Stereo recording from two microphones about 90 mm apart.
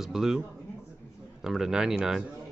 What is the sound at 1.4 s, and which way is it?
Speech, 5° right (ahead or behind).